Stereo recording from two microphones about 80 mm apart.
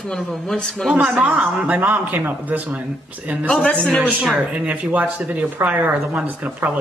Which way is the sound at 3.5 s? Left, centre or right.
Centre.